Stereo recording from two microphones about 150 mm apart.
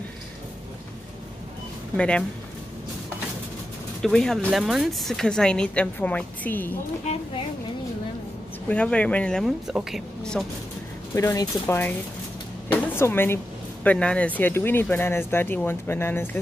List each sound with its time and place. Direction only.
2.0 s speech: 5° left (ahead or behind)
4.0 s speech: 5° left (ahead or behind)
7.1 s speech: 45° left (ahead or behind)
8.6 s speech: 10° left (ahead or behind)
11.1 s speech: 20° left (ahead or behind)